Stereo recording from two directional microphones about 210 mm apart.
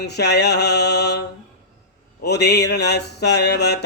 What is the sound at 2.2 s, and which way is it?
Mantra, 50° left (ahead or behind).